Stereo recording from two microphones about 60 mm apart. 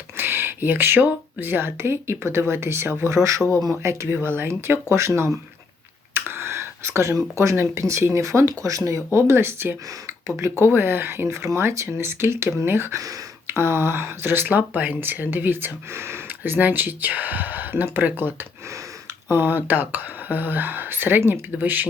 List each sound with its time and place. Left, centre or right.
0.2 s speech: right
4.1 s speech: right
6.1 s a sound: right
7.5 s speech: right
9.1 s speech: right
10.2 s speech: right
10.6 s speech: right
11.5 s speech: right